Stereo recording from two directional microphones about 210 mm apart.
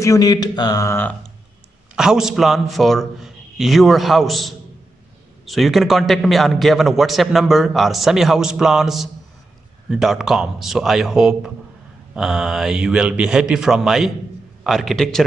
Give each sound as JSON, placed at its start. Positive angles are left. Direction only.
{"t": 0.0, "sound": "speech", "side_deg": 15}
{"t": 2.0, "sound": "a man's voice", "side_deg": -5}